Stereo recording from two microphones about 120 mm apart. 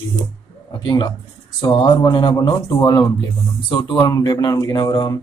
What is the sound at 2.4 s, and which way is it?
Speech, 30° left (ahead or behind).